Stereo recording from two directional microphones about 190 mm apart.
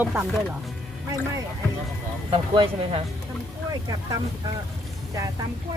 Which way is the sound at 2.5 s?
30° right (ahead or behind).